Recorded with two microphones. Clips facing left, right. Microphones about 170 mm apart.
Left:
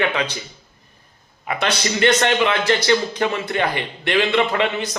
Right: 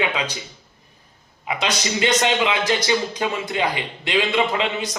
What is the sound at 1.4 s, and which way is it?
A man's voice, 15° right (ahead or behind).